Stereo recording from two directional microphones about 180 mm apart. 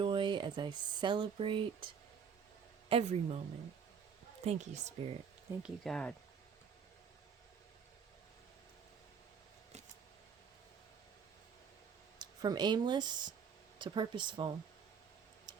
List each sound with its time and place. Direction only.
0.0 s speech: 25° right (ahead or behind)
2.9 s speech: 35° right (ahead or behind)
4.4 s speech: 40° right (ahead or behind)
5.6 s speech: 5° left (ahead or behind)
12.2 s speech: 20° right (ahead or behind)
15.5 s tick-tock: 25° right (ahead or behind)